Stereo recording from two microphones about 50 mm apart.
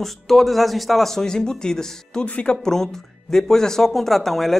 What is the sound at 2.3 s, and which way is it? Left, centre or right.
Speech, left.